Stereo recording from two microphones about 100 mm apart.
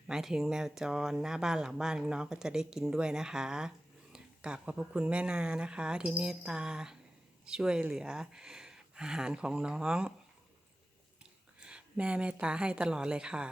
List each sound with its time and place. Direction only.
0.1 s speech: 5° right (ahead or behind)
11.6 s speech: 10° right (ahead or behind)